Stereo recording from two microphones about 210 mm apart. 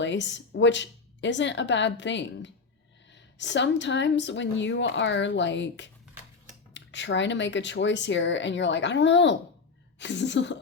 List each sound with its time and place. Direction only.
0.0 s speech: 60° left (ahead or behind)